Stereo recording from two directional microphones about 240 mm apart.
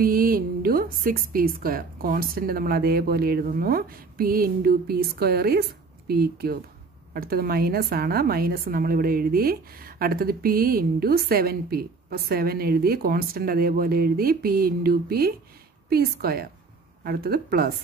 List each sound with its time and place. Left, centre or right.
0.0 s a woman's voice: right